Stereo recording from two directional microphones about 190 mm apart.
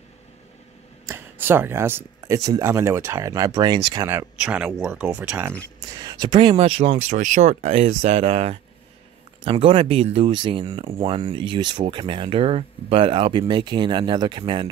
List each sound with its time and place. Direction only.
1.0 s speech: 15° right (ahead or behind)
4.4 s speech: 5° right (ahead or behind)
5.9 s speech: 20° right (ahead or behind)